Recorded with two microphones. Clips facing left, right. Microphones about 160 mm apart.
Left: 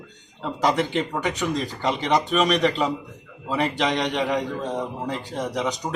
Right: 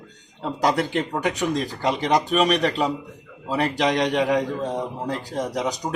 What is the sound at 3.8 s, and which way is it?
A man's voice, 40° right (ahead or behind).